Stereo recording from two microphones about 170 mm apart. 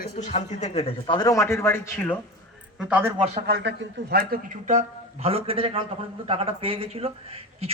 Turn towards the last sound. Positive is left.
turn(degrees=-35)  # may be behind; listen again after turning